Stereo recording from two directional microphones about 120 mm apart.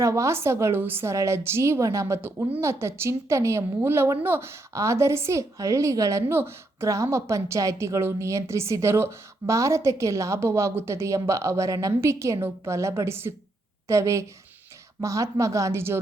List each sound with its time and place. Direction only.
0.0 s a woman's voice: 25° right (ahead or behind)